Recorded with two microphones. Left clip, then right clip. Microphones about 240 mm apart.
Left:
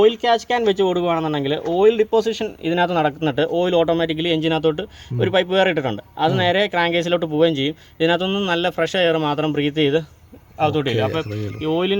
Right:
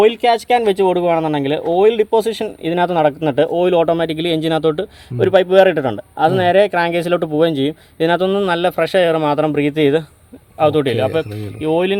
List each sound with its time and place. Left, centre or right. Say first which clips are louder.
0.0 s speech: right 3 dB; right